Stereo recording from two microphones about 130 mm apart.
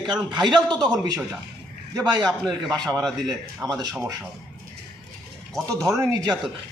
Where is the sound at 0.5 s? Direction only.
35° right (ahead or behind).